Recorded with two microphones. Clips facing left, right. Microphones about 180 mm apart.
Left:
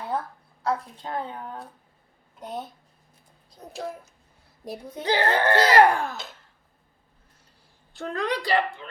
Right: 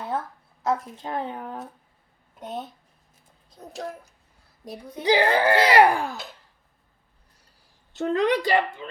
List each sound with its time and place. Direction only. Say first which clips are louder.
0.6 s a woman's voice: right 2 dB; 20° right (ahead or behind)
2.4 s speech: right 1 dB; centre (ahead or behind)
5.0 s speech: right 3 dB; 10° right (ahead or behind)
7.9 s a woman's voice: right 6 dB; 20° right (ahead or behind)